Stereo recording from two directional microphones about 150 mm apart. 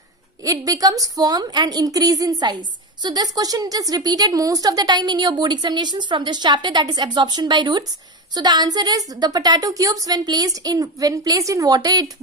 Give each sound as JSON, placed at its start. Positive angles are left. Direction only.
{"t": 0.4, "sound": "a woman's voice", "side_deg": -25}